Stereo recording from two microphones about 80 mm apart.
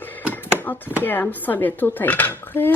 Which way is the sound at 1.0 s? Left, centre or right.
Left.